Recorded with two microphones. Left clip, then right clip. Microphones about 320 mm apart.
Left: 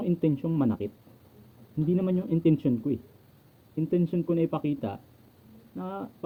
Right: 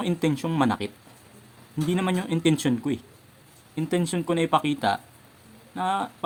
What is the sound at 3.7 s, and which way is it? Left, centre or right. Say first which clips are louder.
Speech: right 1 dB; centre.